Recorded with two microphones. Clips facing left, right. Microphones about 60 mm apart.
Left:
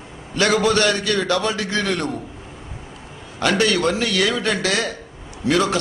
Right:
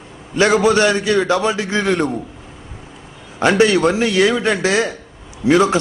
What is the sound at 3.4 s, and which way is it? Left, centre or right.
A man's voice, right.